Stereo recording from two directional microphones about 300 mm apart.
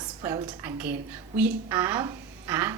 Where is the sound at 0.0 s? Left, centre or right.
Centre.